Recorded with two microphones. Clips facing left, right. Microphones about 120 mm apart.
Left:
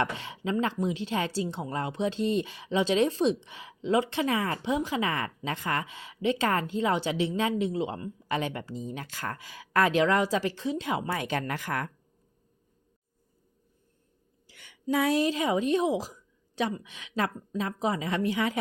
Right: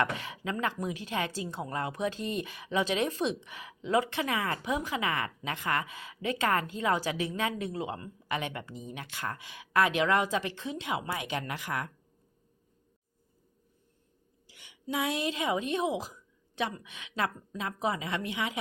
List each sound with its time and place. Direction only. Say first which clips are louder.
0.0 s speech: left 1 dB; 30° left (ahead or behind); by 11.9 s 45° left (ahead or behind)
14.4 s a woman's voice: left 7 dB; 50° left (ahead or behind)